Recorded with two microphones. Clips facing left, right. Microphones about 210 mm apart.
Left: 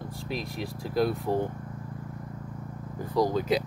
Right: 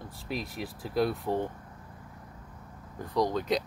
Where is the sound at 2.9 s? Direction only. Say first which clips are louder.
Left 3 dB; 5° left (ahead or behind).